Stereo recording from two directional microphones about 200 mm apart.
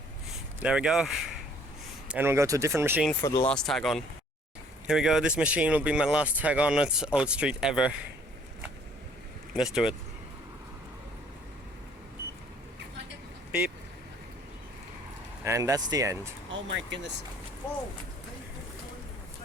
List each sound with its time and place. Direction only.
0.6 s speech: 5° right (ahead or behind)
3.2 s speech: 20° left (ahead or behind)
3.5 s speech: centre (ahead or behind)
9.5 s speech: centre (ahead or behind)
15.4 s speech: 15° right (ahead or behind)
16.6 s speech: 65° right (ahead or behind)